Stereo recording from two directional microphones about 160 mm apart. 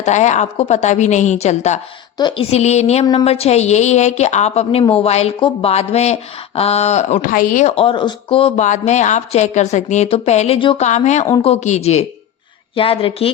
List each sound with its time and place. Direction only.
0.0 s speech: 45° left (ahead or behind)
2.1 s a woman's voice: 30° left (ahead or behind); by 7.7 s 55° left (ahead or behind)
7.8 s speech: 30° left (ahead or behind)
10.6 s a woman's voice: 30° left (ahead or behind)
10.8 s a woman's voice: 45° left (ahead or behind)